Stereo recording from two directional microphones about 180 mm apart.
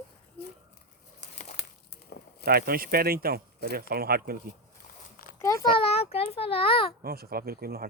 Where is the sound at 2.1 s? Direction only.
60° left (ahead or behind).